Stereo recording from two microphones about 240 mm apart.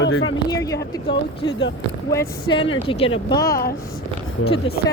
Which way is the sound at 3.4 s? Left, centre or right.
Left.